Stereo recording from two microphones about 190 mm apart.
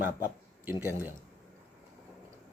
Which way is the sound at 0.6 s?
10° right (ahead or behind).